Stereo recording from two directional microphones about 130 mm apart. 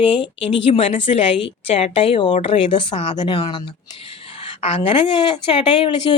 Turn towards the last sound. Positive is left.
turn(degrees=40)  # may be behind; listen again after turning